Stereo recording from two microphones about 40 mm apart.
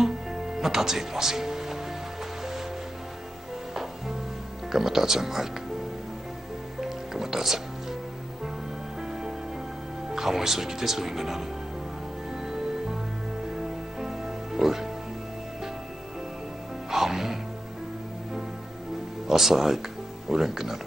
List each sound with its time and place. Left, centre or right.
0.0 s music: centre
4.7 s speech: centre
6.8 s music: centre
10.0 s speech: centre
12.3 s music: centre
16.9 s music: centre
19.2 s speech: centre